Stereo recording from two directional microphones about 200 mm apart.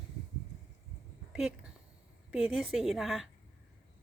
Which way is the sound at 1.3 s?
5° right (ahead or behind).